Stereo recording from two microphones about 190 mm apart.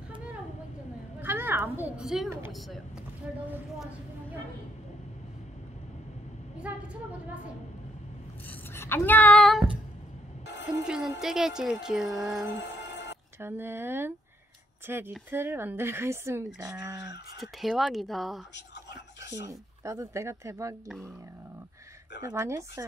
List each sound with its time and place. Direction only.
1.2 s a woman's voice: 10° right (ahead or behind)
6.6 s speech: 5° right (ahead or behind)
8.5 s a sound: 10° left (ahead or behind)
10.9 s speech: 5° right (ahead or behind)
12.5 s music: 65° left (ahead or behind)
13.4 s speech: 10° right (ahead or behind)
17.4 s speech: centre (ahead or behind)
19.3 s speech: 15° right (ahead or behind)
22.2 s speech: 15° right (ahead or behind)